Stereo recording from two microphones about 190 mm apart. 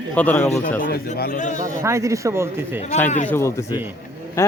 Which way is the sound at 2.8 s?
35° left (ahead or behind).